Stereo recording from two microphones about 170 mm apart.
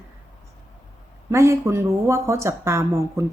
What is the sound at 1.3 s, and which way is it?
Speech, 15° right (ahead or behind).